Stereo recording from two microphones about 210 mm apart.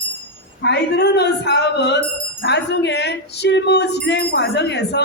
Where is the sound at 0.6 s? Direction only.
55° left (ahead or behind).